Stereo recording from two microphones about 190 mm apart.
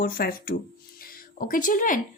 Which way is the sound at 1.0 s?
50° left (ahead or behind).